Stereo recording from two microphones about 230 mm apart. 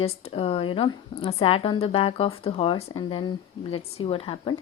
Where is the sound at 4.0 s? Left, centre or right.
Left.